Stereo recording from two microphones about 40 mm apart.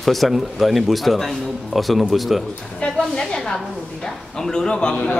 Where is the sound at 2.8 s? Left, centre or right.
Left.